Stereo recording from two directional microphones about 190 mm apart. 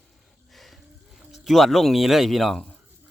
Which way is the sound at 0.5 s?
Centre (ahead or behind).